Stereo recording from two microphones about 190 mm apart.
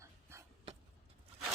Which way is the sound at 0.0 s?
15° right (ahead or behind).